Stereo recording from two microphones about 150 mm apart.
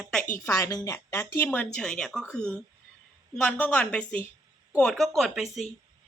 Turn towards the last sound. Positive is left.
turn(degrees=0)  # may be behind; listen again after turning